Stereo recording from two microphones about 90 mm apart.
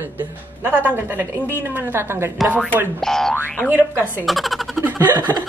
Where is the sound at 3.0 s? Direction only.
5° left (ahead or behind).